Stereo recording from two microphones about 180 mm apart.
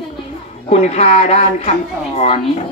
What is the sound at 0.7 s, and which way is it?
A woman's voice, 35° left (ahead or behind).